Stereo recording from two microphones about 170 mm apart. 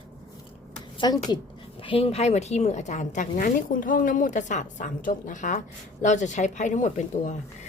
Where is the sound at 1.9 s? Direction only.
35° left (ahead or behind).